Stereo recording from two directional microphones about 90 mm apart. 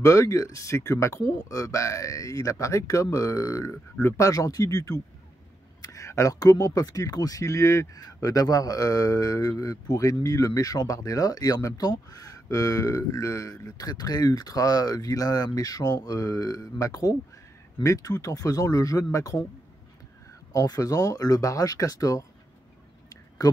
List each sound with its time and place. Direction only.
0.0 s speech: 35° left (ahead or behind)
20.5 s speech: 45° left (ahead or behind)
23.0 s a sound: 45° left (ahead or behind)